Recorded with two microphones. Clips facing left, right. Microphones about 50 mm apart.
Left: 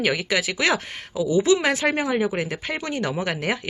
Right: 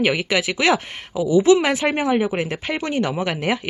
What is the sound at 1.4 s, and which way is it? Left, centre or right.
Speech, right.